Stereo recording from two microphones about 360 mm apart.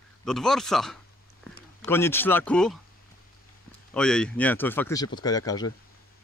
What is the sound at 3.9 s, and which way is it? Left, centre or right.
Speech, centre.